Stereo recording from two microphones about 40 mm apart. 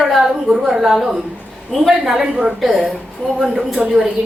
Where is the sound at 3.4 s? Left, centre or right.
Centre.